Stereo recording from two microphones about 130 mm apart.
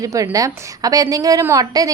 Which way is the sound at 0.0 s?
25° right (ahead or behind).